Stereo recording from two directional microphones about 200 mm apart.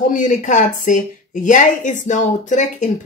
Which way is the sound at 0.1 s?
40° left (ahead or behind).